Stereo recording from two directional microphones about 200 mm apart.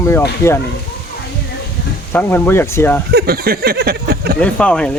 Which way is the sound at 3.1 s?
50° right (ahead or behind).